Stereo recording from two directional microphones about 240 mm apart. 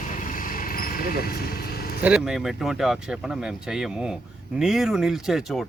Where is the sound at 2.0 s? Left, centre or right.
Centre.